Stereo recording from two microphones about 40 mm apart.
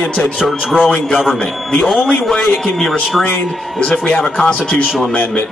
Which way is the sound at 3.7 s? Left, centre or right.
Left.